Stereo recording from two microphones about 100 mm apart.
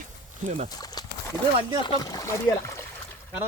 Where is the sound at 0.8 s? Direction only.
45° left (ahead or behind).